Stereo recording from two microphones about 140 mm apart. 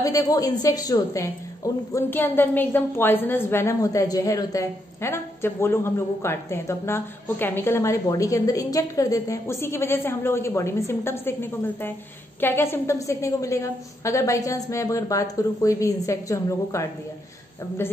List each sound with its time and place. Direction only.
0.0 s a woman's voice: 25° left (ahead or behind)
12.4 s a woman's voice: 15° left (ahead or behind)